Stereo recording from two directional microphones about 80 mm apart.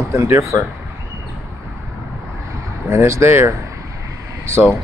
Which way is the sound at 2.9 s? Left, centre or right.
Right.